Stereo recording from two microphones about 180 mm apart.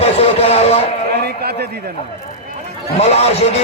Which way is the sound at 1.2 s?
65° right (ahead or behind).